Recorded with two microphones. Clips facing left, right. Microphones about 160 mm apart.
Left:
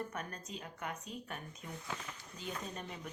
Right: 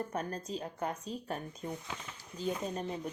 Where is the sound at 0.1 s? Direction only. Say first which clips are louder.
Right 7 dB; 30° right (ahead or behind).